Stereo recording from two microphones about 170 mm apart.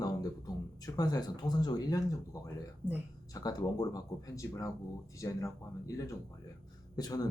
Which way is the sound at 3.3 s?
20° left (ahead or behind).